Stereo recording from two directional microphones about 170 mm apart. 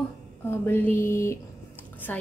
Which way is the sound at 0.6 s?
15° left (ahead or behind).